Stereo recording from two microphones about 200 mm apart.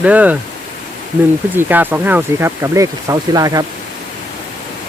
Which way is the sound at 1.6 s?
10° right (ahead or behind).